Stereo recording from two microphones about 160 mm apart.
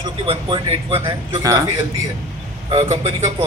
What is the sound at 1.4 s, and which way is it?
Speech, 20° right (ahead or behind).